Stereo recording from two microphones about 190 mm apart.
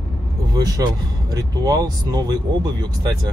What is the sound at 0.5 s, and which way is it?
Speech, 20° right (ahead or behind).